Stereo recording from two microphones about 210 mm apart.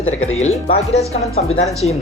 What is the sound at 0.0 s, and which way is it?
Speech, 75° left (ahead or behind).